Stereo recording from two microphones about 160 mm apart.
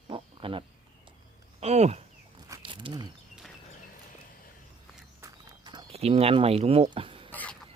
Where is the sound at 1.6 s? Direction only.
45° right (ahead or behind).